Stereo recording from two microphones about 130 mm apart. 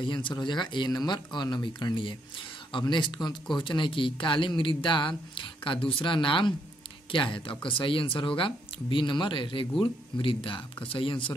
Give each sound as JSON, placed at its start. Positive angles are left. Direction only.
{"t": 0.0, "sound": "speech", "side_deg": 35}